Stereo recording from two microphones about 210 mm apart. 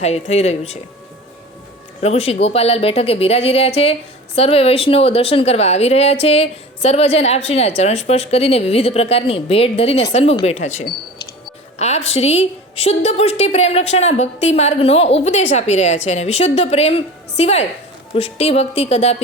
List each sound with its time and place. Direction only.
0.0 s a woman's voice: 30° left (ahead or behind)
2.0 s a woman's voice: 30° left (ahead or behind)